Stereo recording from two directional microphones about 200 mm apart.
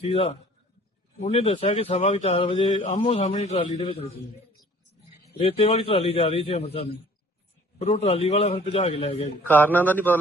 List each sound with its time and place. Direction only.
0.0 s a man's voice: 30° left (ahead or behind)
5.4 s a man's voice: 30° left (ahead or behind)
7.8 s a man's voice: 30° left (ahead or behind)
9.4 s a man's voice: 10° left (ahead or behind)